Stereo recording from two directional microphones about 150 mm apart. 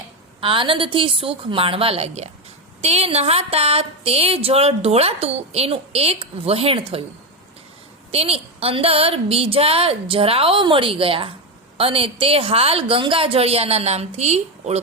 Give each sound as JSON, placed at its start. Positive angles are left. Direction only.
{"t": 0.4, "sound": "speech", "side_deg": -35}
{"t": 8.1, "sound": "speech", "side_deg": -40}